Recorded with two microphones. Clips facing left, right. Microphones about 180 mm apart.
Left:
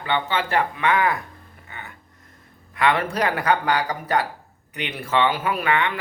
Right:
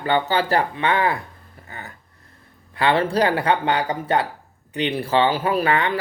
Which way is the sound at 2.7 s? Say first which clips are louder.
Right 2 dB; 30° right (ahead or behind).